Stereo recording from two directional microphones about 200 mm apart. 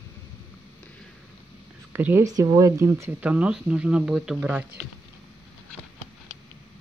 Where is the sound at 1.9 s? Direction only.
10° right (ahead or behind).